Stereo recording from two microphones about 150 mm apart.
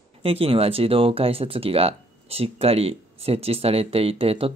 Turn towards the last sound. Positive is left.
turn(degrees=-40)  # may be behind; listen again after turning